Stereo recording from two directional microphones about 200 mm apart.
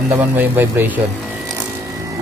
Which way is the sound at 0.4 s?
10° right (ahead or behind).